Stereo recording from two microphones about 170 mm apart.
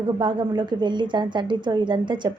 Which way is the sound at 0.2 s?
25° right (ahead or behind).